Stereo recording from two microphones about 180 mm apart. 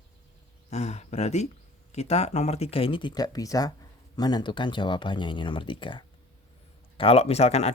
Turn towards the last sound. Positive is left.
turn(degrees=35)  # may be behind; listen again after turning